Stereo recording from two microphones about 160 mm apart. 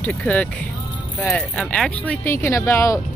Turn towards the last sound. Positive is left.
turn(degrees=20)  # may be behind; listen again after turning